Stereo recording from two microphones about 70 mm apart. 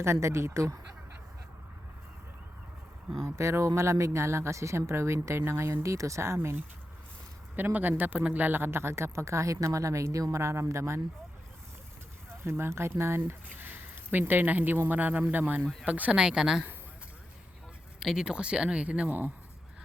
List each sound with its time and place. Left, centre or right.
0.0 s speech: right
3.2 s speech: right
7.5 s speech: right
12.5 s speech: right
16.1 s speech: centre
18.0 s speech: centre; by 19.3 s right